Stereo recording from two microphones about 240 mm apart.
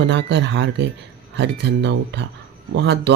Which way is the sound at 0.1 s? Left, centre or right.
Right.